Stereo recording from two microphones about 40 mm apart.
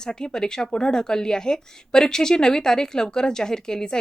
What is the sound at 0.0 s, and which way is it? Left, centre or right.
Speech, centre.